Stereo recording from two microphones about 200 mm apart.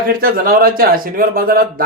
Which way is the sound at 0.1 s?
45° right (ahead or behind).